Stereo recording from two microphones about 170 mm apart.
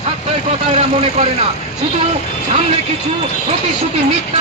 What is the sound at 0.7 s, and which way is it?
Speech, 35° right (ahead or behind).